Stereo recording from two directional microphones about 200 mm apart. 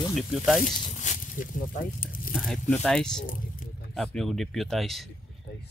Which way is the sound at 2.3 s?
Centre (ahead or behind).